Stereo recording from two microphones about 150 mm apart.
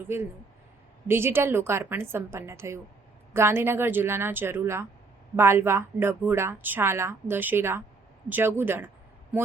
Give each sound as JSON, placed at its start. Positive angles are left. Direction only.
{"t": 0.0, "sound": "a woman's voice", "side_deg": -15}